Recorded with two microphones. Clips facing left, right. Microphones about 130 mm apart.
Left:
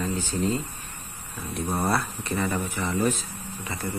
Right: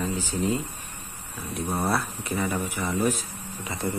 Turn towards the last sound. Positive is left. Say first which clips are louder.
# right 2 dB
turn(degrees=-15)  # may be behind; listen again after turning